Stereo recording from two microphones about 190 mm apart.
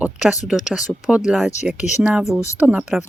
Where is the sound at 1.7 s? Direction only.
40° left (ahead or behind).